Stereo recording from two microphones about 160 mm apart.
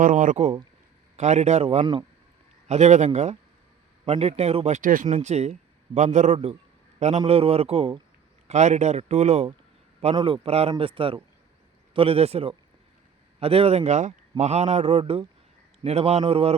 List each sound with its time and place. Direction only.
0.0 s a man's voice: 55° right (ahead or behind); by 2.0 s 30° right (ahead or behind)
2.6 s a man's voice: 45° right (ahead or behind)
5.0 s a man's voice: 45° right (ahead or behind)
8.4 s a man's voice: 45° right (ahead or behind)